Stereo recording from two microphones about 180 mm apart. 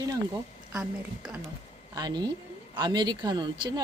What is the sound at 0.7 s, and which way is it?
Speech, 5° right (ahead or behind).